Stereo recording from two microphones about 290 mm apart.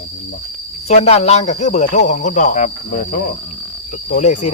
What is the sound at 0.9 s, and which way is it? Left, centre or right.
Speech, left.